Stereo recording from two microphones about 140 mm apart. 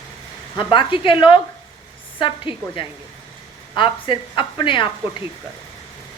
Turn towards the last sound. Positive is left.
turn(degrees=35)  # may be behind; listen again after turning